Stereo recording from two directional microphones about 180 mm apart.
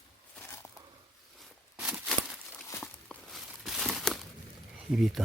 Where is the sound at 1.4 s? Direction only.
5° right (ahead or behind).